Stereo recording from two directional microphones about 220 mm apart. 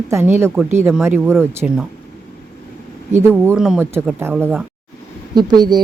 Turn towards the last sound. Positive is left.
turn(degrees=-20)  # may be behind; listen again after turning